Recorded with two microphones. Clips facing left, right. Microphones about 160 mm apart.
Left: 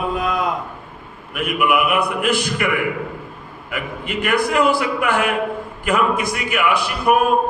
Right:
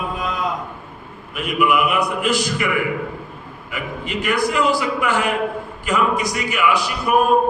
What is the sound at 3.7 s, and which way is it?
A man's voice, 55° left (ahead or behind).